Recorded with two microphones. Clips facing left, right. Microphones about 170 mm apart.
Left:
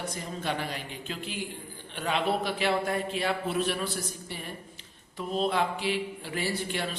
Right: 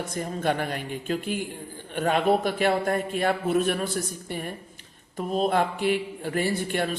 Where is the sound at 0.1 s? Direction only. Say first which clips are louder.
Right 6 dB; 50° right (ahead or behind).